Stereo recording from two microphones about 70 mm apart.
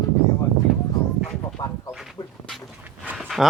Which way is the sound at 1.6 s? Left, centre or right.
Left.